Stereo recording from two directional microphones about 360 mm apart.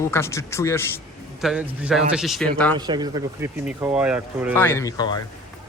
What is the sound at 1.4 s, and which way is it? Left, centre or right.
Speech, centre.